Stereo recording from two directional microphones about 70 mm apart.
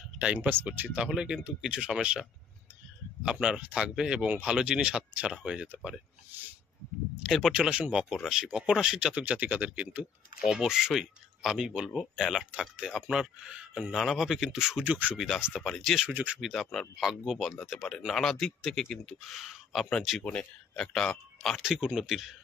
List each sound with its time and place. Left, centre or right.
0.4 s speech: right
0.9 s speech: centre
3.3 s speech: centre
7.2 s speech: centre
7.5 s speech: centre
10.5 s speech: centre
14.9 s speech: right
15.1 s speech: centre
16.1 s speech: right
16.3 s speech: centre
21.5 s speech: centre